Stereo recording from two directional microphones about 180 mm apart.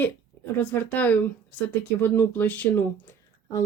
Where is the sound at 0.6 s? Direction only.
10° left (ahead or behind).